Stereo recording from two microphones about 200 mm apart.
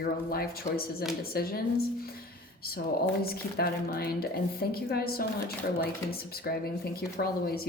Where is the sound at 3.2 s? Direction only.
50° left (ahead or behind).